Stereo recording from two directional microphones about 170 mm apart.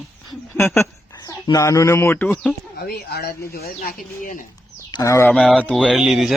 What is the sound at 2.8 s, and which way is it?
Speech, 70° left (ahead or behind).